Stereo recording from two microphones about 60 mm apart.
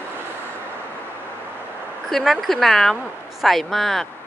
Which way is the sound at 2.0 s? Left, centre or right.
Centre.